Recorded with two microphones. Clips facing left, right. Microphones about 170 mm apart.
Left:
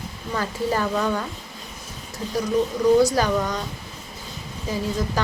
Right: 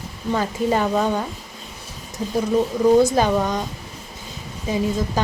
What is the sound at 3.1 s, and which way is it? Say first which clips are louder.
Speech: right 3 dB; 20° right (ahead or behind).